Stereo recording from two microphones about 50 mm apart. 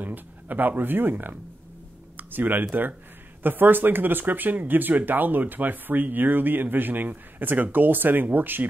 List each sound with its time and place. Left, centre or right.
0.0 s speech: right